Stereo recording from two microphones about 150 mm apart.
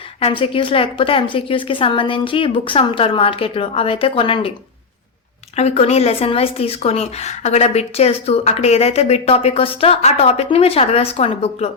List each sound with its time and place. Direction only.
0.2 s a woman's voice: 40° left (ahead or behind)
5.5 s a woman's voice: 45° left (ahead or behind)